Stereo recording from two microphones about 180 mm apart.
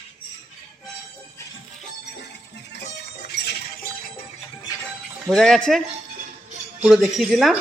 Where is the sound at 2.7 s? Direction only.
65° left (ahead or behind).